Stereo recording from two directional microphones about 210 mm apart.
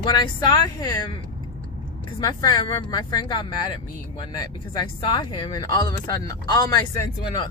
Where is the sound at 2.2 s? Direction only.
20° left (ahead or behind).